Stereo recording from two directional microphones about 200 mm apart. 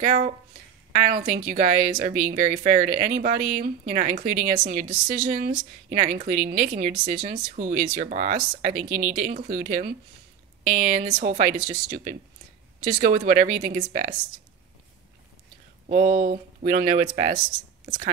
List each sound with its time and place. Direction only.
0.0 s a woman's voice: 40° right (ahead or behind)
11.5 s speech: 20° right (ahead or behind)
11.9 s a woman's voice: 40° right (ahead or behind)
15.9 s a woman's voice: 40° right (ahead or behind)